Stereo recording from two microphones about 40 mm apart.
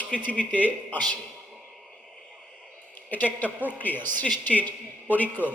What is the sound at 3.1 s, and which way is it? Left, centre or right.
A man's voice, left.